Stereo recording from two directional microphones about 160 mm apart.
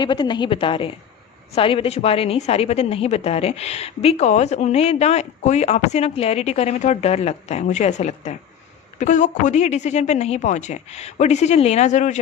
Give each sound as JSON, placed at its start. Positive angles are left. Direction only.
{"t": 0.0, "sound": "a woman's voice", "side_deg": 30}